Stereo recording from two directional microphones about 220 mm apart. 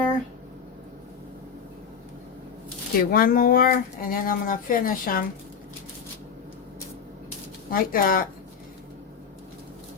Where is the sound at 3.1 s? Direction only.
40° left (ahead or behind).